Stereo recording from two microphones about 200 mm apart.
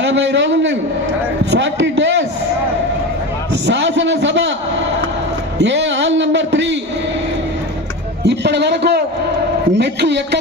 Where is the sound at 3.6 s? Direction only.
60° right (ahead or behind).